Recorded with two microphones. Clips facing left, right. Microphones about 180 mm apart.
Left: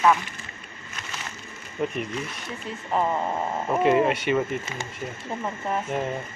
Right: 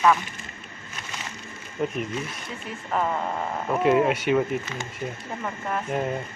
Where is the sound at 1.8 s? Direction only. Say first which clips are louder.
Even; centre (ahead or behind).